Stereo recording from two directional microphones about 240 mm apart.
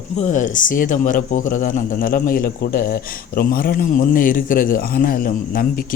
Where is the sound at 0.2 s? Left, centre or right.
Left.